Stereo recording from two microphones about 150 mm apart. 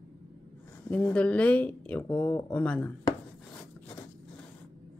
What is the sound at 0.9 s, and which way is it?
Speech, 10° left (ahead or behind).